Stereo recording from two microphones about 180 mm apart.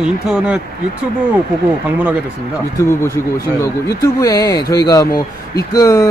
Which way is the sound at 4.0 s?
20° left (ahead or behind).